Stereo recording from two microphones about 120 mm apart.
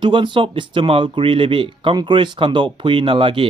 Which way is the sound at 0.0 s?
45° right (ahead or behind).